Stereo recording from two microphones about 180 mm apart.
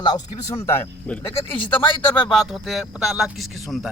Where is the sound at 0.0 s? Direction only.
20° left (ahead or behind).